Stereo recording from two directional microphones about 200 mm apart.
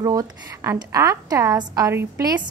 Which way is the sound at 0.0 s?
15° right (ahead or behind).